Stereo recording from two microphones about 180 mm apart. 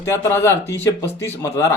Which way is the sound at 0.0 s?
15° left (ahead or behind).